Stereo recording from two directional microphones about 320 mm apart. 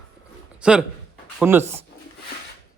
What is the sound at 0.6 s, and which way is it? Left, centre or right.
Speech, centre.